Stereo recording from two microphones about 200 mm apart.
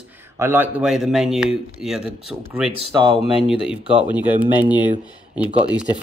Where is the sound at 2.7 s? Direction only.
25° right (ahead or behind).